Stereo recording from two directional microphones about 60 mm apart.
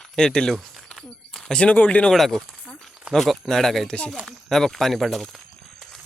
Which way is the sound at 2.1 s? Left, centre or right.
Centre.